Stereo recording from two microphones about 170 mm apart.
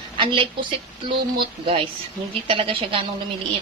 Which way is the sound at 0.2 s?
30° right (ahead or behind).